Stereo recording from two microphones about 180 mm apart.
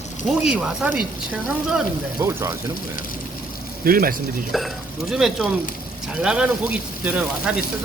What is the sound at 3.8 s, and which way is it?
Speech, 55° right (ahead or behind).